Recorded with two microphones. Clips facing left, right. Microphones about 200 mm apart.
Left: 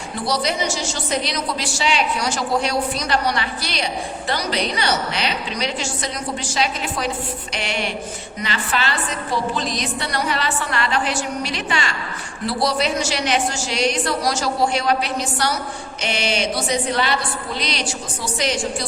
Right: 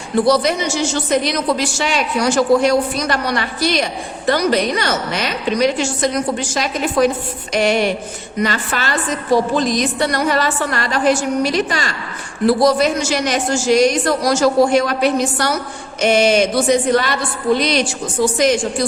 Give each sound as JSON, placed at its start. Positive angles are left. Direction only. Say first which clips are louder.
{"t": 0.3, "sound": "a woman's voice", "louder": "right 4 dB", "side_deg": -55}